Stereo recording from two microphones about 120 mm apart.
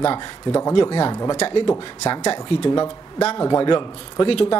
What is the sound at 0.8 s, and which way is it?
A man's voice, 45° left (ahead or behind).